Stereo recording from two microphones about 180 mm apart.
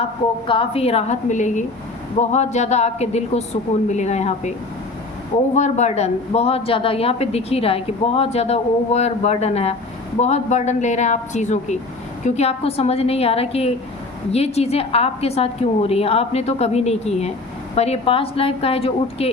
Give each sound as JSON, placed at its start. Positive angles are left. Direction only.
{"t": 0.4, "sound": "a woman's voice", "side_deg": 30}
{"t": 5.5, "sound": "a woman's voice", "side_deg": 40}